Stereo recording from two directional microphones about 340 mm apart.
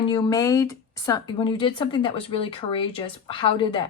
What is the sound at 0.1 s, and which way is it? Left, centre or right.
Speech, centre.